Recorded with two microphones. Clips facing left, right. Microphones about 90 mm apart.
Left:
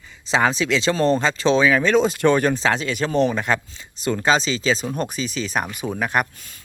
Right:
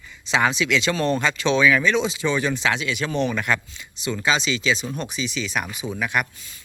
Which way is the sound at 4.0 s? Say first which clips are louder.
Left 4 dB; 40° left (ahead or behind).